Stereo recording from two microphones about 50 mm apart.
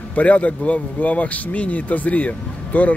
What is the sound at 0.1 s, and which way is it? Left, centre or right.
Speech, left.